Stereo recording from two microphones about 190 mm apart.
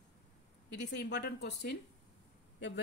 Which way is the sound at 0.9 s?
65° left (ahead or behind).